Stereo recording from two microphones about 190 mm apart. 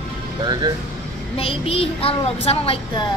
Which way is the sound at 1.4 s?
30° left (ahead or behind).